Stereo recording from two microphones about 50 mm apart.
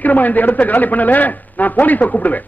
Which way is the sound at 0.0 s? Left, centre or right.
Left.